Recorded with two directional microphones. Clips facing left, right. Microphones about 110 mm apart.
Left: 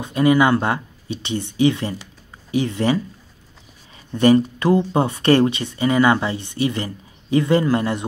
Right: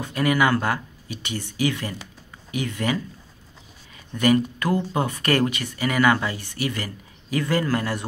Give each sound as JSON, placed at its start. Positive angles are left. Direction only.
{"t": 0.0, "sound": "speech", "side_deg": 25}
{"t": 4.1, "sound": "speech", "side_deg": 30}